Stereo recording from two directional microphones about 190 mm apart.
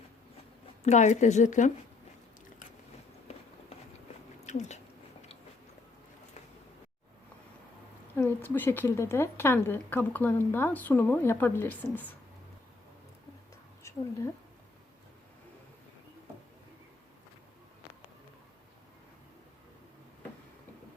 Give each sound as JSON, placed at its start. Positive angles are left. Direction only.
{"t": 0.9, "sound": "a woman's voice", "side_deg": 40}
{"t": 4.4, "sound": "speech", "side_deg": 35}
{"t": 8.1, "sound": "a woman's voice", "side_deg": 10}